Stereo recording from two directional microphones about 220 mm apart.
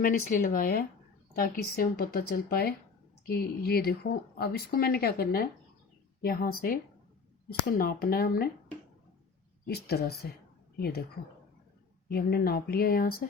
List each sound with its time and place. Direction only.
0.0 s speech: 40° left (ahead or behind)
7.8 s speech: 40° left (ahead or behind)
9.6 s speech: 45° left (ahead or behind)
12.0 s speech: 45° left (ahead or behind)